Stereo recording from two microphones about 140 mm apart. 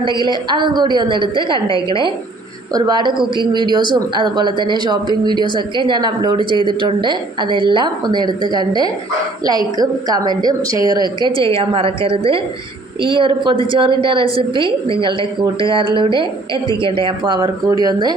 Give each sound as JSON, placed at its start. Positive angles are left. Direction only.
{"t": 0.2, "sound": "a woman's voice", "side_deg": -35}
{"t": 10.6, "sound": "speech", "side_deg": 40}
{"t": 11.3, "sound": "a woman's voice", "side_deg": -40}